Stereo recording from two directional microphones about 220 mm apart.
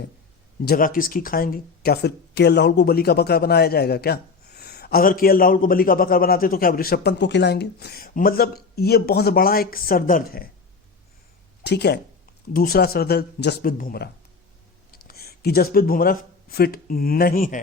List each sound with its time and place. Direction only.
0.6 s speech: 45° left (ahead or behind)
11.6 s speech: 50° left (ahead or behind)